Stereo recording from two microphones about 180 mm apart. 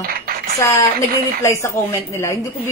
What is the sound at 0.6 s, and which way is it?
A man's voice, 15° left (ahead or behind).